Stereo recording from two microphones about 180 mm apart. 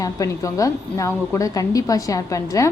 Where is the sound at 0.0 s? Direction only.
20° left (ahead or behind).